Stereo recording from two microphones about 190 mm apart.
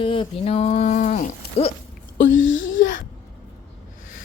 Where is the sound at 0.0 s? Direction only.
30° left (ahead or behind).